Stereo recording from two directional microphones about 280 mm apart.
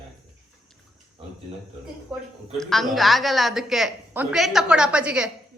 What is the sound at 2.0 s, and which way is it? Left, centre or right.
A woman's voice, centre.